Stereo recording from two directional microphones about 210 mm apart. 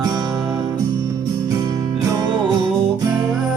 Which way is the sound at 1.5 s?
15° right (ahead or behind).